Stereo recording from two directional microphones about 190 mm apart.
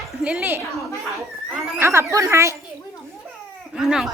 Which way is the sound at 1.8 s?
15° right (ahead or behind).